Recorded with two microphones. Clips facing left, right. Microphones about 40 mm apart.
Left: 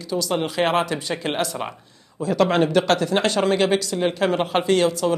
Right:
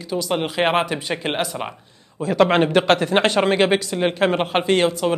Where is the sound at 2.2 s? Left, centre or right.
Right.